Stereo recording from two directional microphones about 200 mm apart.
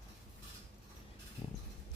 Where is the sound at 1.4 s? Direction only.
25° left (ahead or behind).